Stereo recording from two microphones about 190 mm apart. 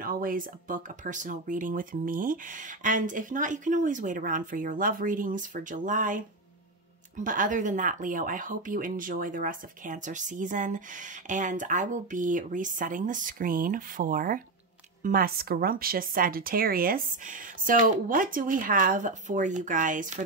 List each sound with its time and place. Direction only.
0.0 s speech: 50° right (ahead or behind)